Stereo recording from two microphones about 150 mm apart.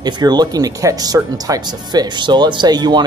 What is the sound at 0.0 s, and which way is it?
Speech, 25° right (ahead or behind).